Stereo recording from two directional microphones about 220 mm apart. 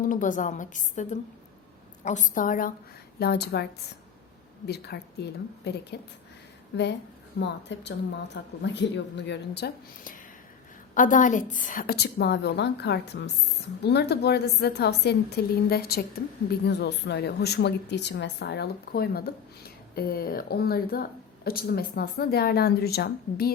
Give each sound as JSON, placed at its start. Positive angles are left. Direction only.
{"t": 0.0, "sound": "a woman's voice", "side_deg": 35}
{"t": 7.3, "sound": "a woman's voice", "side_deg": 50}